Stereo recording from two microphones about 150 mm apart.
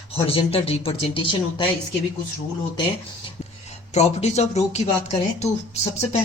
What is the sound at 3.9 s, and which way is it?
Speech, 45° left (ahead or behind).